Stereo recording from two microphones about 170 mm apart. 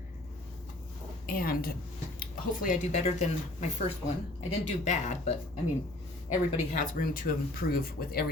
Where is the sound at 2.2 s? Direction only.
50° left (ahead or behind).